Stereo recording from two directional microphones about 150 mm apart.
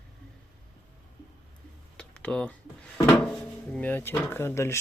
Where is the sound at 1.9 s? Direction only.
5° left (ahead or behind).